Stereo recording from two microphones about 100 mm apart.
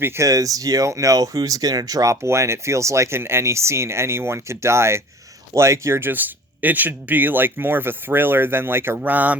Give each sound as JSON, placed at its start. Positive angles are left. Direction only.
{"t": 0.0, "sound": "speech", "side_deg": -30}